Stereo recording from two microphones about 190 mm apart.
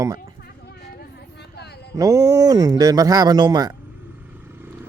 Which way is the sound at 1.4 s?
60° left (ahead or behind).